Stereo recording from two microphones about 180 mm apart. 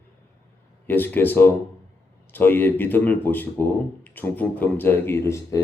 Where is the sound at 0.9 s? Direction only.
10° left (ahead or behind).